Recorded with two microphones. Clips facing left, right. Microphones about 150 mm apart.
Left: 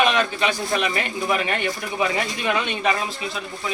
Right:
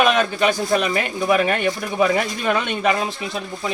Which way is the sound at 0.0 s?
45° right (ahead or behind).